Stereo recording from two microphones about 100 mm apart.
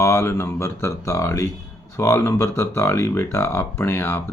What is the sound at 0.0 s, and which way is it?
Speech, 25° left (ahead or behind).